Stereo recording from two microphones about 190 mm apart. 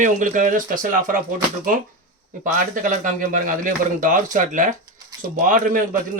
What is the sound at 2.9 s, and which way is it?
A man's voice, 45° right (ahead or behind).